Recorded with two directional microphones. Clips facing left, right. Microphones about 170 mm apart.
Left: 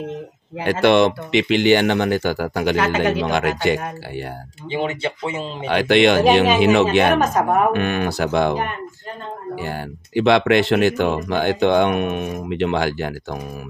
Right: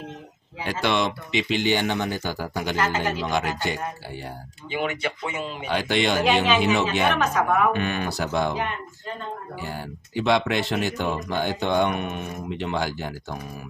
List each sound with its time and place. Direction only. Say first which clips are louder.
0.6 s speech: left 9 dB; 60° left (ahead or behind)
4.6 s speech: left 4 dB; 25° left (ahead or behind)
5.7 s speech: left 9 dB; 75° left (ahead or behind)
7.2 s a woman's voice: left 4 dB; 40° left (ahead or behind)
7.7 s speech: left 6 dB; 60° left (ahead or behind)
9.6 s speech: left 6 dB; 70° left (ahead or behind)